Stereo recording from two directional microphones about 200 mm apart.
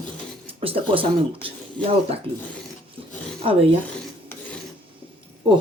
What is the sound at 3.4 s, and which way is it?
Speech, 30° right (ahead or behind).